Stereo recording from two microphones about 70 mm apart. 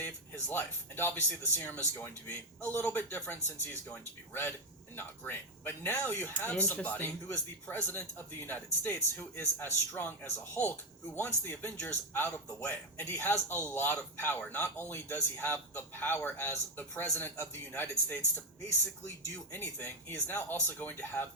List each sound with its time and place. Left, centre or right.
0.4 s speech: left
6.3 s speech: centre
11.5 s speech: left
19.5 s speech: left